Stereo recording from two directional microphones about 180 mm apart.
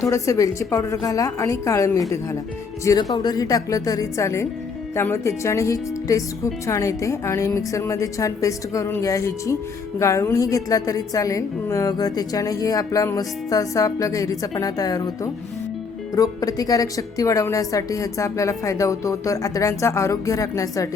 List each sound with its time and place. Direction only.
0.0 s a woman's voice: 20° left (ahead or behind)